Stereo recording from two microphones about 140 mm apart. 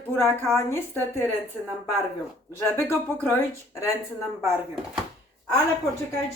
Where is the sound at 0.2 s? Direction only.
15° left (ahead or behind).